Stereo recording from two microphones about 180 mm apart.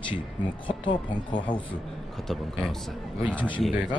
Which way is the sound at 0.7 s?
25° left (ahead or behind).